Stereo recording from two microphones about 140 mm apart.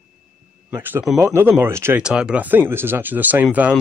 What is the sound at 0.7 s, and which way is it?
Speech, 15° right (ahead or behind).